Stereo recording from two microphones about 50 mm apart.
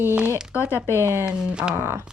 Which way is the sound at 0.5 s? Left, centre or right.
Left.